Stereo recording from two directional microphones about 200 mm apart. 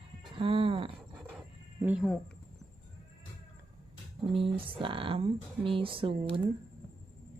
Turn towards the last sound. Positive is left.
turn(degrees=-25)  # may be behind; listen again after turning